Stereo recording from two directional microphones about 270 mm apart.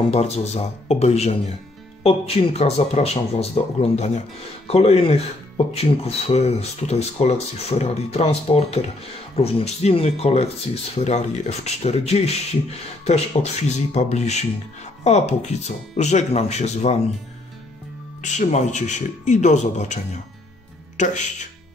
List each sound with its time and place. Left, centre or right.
0.1 s speech: left
18.2 s speech: left
21.0 s speech: left